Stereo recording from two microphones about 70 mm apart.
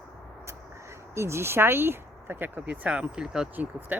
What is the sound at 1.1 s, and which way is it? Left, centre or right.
Speech, right.